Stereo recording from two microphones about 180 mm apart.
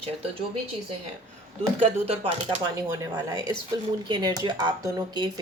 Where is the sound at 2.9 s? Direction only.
20° right (ahead or behind).